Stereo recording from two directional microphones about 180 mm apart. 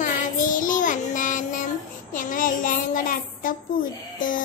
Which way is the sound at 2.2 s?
50° left (ahead or behind).